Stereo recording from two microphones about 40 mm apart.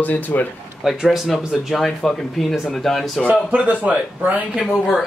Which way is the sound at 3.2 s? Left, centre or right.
Right.